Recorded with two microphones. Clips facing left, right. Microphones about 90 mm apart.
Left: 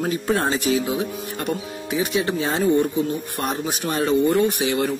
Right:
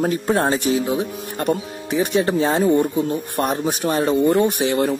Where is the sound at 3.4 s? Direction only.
30° right (ahead or behind).